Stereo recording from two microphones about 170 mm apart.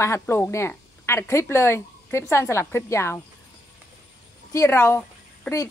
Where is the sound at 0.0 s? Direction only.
15° left (ahead or behind).